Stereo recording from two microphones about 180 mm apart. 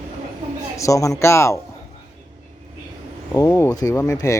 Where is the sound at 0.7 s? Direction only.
15° left (ahead or behind).